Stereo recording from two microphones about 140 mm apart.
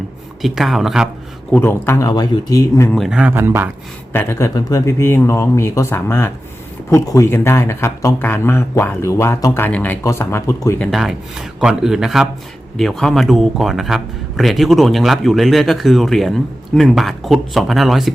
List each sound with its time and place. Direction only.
0.4 s speech: centre (ahead or behind)
1.5 s a man's voice: 15° left (ahead or behind)
2.0 s speech: 30° left (ahead or behind)
2.9 s speech: centre (ahead or behind)
4.1 s speech: 15° left (ahead or behind)
10.8 s speech: centre (ahead or behind)